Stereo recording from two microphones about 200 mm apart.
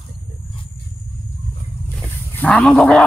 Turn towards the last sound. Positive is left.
turn(degrees=0)  # may be behind; listen again after turning